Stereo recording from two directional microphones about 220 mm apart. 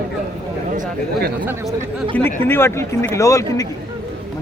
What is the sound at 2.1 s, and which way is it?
Speech, 10° left (ahead or behind).